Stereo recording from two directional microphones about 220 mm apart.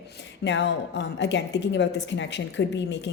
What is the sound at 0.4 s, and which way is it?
A woman's voice, 55° left (ahead or behind).